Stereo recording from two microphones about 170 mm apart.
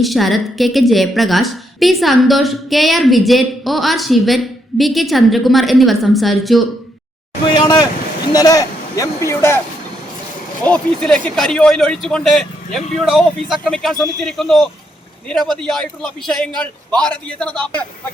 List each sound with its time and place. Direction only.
0.0 s a woman's voice: centre (ahead or behind)
7.4 s speech: 25° left (ahead or behind)
10.7 s a woman's voice: 5° left (ahead or behind)